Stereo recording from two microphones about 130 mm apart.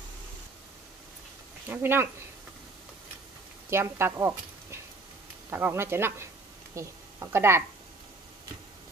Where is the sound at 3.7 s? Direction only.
20° right (ahead or behind).